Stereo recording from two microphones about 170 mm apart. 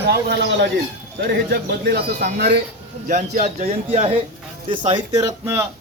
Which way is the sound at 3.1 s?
45° right (ahead or behind).